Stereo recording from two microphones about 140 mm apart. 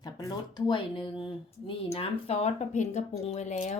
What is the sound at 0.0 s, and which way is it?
Speech, 30° left (ahead or behind).